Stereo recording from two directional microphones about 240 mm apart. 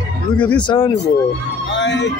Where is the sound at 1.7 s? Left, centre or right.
Left.